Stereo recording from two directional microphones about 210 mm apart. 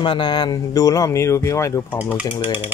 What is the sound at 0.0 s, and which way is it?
Speech, 20° left (ahead or behind).